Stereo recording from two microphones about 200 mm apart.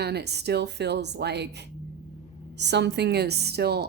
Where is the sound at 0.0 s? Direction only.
55° right (ahead or behind).